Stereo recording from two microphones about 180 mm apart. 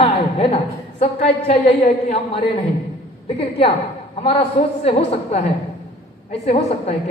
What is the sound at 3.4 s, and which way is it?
A woman's voice, 35° left (ahead or behind).